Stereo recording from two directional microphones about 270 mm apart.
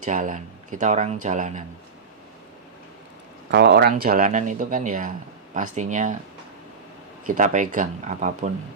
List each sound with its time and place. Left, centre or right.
0.0 s speech: right
3.5 s speech: right
7.3 s speech: right